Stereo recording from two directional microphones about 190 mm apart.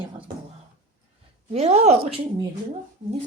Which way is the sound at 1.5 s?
35° right (ahead or behind).